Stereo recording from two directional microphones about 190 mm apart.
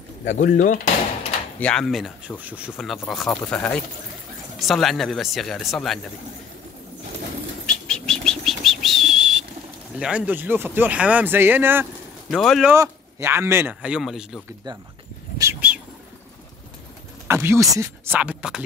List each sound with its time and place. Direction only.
0.2 s speech: 45° left (ahead or behind)
1.6 s speech: 5° left (ahead or behind)
7.6 s bird flight: 5° left (ahead or behind)
9.9 s speech: 5° right (ahead or behind)
12.3 s speech: centre (ahead or behind)
12.7 s speech: 15° right (ahead or behind)
15.3 s bird: 10° right (ahead or behind)
17.3 s speech: 15° right (ahead or behind)